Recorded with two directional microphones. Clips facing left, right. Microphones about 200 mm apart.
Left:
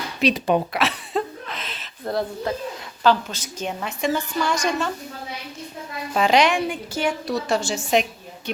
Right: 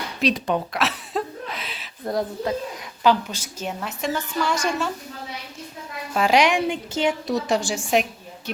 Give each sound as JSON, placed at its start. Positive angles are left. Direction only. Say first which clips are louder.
{"t": 0.2, "sound": "speech", "louder": "left 2 dB", "side_deg": 0}
{"t": 0.8, "sound": "a sound", "louder": "left 2 dB", "side_deg": -5}
{"t": 3.0, "sound": "a woman's voice", "louder": "even", "side_deg": -10}
{"t": 6.1, "sound": "a woman's voice", "louder": "even", "side_deg": -10}
{"t": 6.7, "sound": "a woman's voice", "louder": "right 2 dB", "side_deg": -20}